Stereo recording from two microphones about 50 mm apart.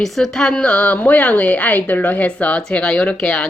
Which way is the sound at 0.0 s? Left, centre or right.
Centre.